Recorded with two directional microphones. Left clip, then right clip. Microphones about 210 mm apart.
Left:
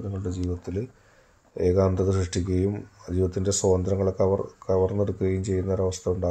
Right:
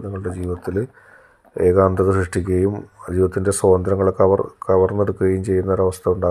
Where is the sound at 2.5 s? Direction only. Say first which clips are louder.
Right 8 dB; 10° right (ahead or behind).